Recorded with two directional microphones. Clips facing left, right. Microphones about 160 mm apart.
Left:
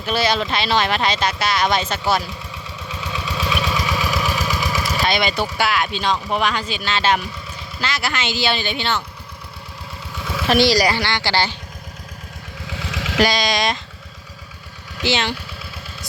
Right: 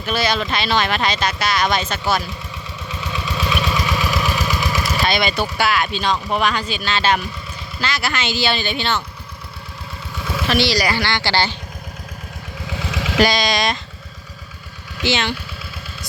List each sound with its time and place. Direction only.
0.0 s speech: 30° left (ahead or behind)
2.9 s engine: 10° left (ahead or behind)
5.4 s speech: 20° left (ahead or behind)
10.2 s vehicle: 5° right (ahead or behind)
10.4 s speech: 45° left (ahead or behind)
10.9 s speech: 20° left (ahead or behind)
12.6 s vehicle: 55° right (ahead or behind)
13.1 s speech: 10° left (ahead or behind)
15.0 s speech: 35° left (ahead or behind)